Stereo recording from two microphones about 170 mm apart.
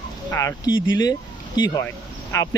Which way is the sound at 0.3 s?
20° left (ahead or behind).